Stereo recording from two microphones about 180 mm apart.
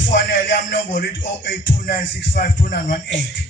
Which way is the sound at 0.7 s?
50° left (ahead or behind).